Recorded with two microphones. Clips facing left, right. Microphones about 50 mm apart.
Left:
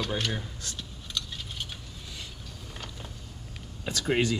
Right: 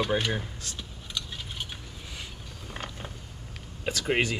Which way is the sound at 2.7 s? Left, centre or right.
Right.